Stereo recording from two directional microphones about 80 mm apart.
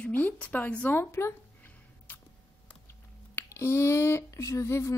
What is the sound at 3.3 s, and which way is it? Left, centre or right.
Speech, left.